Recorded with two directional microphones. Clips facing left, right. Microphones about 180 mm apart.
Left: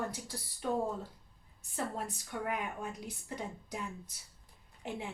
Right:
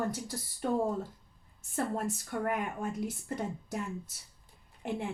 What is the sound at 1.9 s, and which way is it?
Speech, 45° right (ahead or behind).